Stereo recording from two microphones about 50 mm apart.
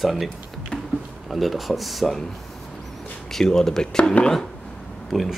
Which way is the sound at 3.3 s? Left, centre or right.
Centre.